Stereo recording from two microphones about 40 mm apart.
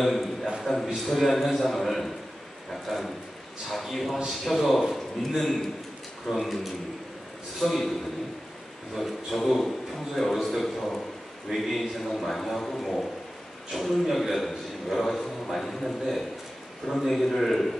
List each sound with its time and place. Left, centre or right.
0.0 s a man's voice: centre
0.6 s a sound: centre
0.9 s a man's voice: centre
8.9 s a man's voice: centre